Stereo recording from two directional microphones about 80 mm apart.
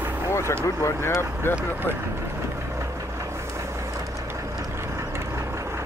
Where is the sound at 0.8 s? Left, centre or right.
Left.